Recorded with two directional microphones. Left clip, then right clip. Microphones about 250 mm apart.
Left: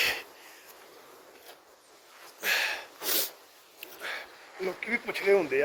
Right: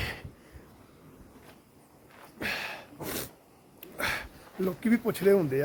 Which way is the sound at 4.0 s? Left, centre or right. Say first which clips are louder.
Right 6 dB; right.